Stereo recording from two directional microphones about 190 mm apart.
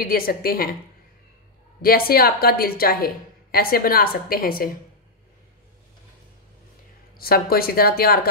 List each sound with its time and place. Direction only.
0.0 s a woman's voice: 50° left (ahead or behind)
1.8 s a woman's voice: 50° left (ahead or behind)
7.2 s a woman's voice: 50° left (ahead or behind)